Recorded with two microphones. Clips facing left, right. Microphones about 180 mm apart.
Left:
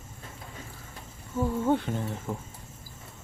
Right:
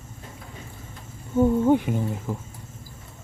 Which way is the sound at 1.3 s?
30° right (ahead or behind).